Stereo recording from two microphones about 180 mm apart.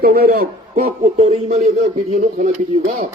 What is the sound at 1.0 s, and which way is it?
Speech, 35° right (ahead or behind).